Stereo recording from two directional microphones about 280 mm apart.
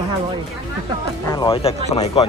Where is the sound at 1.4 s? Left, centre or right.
Centre.